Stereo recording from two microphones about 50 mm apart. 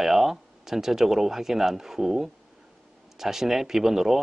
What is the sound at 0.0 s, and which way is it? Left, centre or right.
Speech, centre.